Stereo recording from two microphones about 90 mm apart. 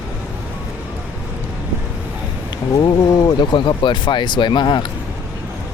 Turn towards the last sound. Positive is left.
turn(degrees=55)  # may be behind; listen again after turning